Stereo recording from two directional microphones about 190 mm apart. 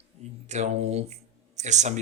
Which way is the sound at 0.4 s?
40° right (ahead or behind).